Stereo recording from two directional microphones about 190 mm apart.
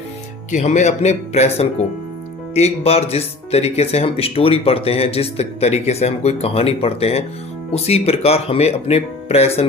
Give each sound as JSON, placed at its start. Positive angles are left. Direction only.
{"t": 0.5, "sound": "speech", "side_deg": 35}